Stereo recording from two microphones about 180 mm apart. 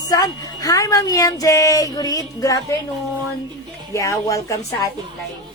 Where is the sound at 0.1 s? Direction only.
20° left (ahead or behind).